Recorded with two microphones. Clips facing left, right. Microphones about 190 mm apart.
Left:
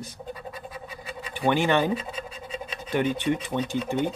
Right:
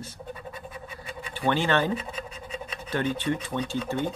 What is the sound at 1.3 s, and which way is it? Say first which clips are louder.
Speech: left 2 dB; 15° left (ahead or behind).